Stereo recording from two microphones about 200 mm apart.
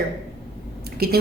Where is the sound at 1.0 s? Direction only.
50° right (ahead or behind).